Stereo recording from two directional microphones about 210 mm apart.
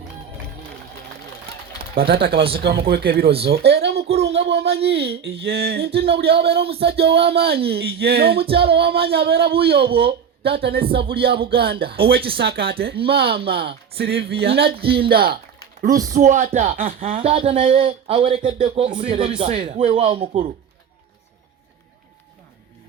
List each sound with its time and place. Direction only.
2.0 s speech: 45° right (ahead or behind)
6.6 s speech: 30° right (ahead or behind)
7.0 s speech: 50° right (ahead or behind)
17.2 s speech: 30° right (ahead or behind)